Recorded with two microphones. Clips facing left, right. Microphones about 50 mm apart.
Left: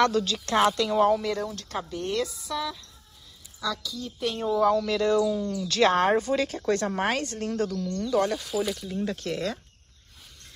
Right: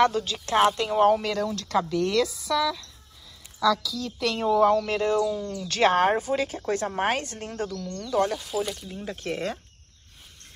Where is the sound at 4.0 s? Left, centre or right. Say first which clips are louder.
Right 2 dB; right.